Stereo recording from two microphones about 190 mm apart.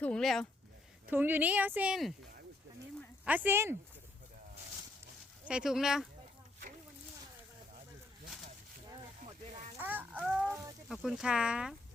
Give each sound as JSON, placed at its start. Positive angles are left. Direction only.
{"t": 0.0, "sound": "speech", "side_deg": 5}
{"t": 1.0, "sound": "speech", "side_deg": -10}
{"t": 3.2, "sound": "speech", "side_deg": -10}
{"t": 5.5, "sound": "speech", "side_deg": -5}
{"t": 9.2, "sound": "a sound", "side_deg": -35}
{"t": 9.7, "sound": "music", "side_deg": -10}
{"t": 10.5, "sound": "a sound", "side_deg": -15}
{"t": 10.8, "sound": "speech", "side_deg": 0}